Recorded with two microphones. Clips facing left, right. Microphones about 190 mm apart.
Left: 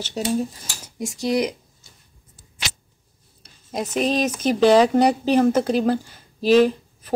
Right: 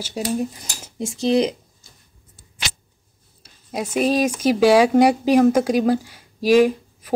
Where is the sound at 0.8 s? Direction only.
25° right (ahead or behind).